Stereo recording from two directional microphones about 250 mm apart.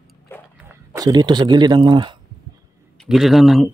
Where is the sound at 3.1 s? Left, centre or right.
Centre.